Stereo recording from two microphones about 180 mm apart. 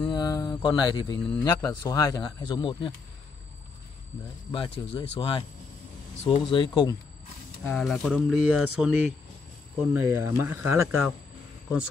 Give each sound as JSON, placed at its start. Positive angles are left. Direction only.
{"t": 0.1, "sound": "mantra", "side_deg": 20}
{"t": 1.4, "sound": "speech", "side_deg": 20}
{"t": 4.5, "sound": "speech", "side_deg": 30}
{"t": 7.6, "sound": "speech", "side_deg": 0}